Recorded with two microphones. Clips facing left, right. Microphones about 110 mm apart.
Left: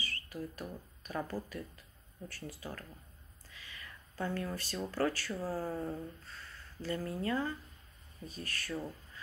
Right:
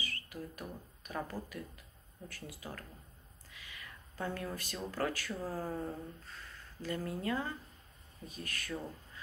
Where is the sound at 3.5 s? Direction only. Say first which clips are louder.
Even; 15° right (ahead or behind).